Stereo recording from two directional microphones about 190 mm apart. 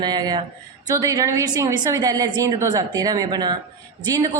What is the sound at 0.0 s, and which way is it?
A woman's voice, 20° right (ahead or behind).